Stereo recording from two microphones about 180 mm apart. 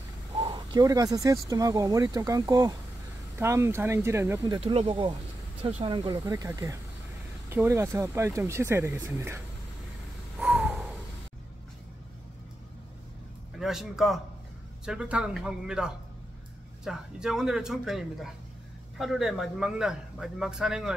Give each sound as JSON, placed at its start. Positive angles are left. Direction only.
{"t": 0.4, "sound": "speech", "side_deg": -25}
{"t": 4.6, "sound": "speech", "side_deg": -30}
{"t": 10.4, "sound": "a sound", "side_deg": -5}
{"t": 13.6, "sound": "a man's voice", "side_deg": 0}